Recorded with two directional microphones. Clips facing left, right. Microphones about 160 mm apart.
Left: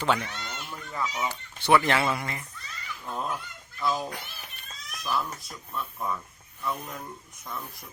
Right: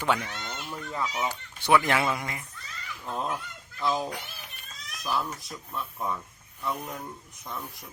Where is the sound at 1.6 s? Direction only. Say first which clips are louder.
Left 1 dB; 10° right (ahead or behind).